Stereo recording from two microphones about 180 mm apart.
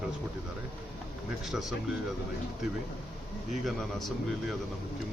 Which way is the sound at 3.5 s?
Centre (ahead or behind).